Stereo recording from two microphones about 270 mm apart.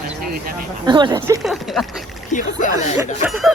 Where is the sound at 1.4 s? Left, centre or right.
Centre.